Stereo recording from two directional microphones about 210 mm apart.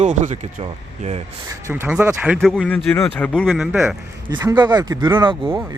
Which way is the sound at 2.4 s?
5° left (ahead or behind).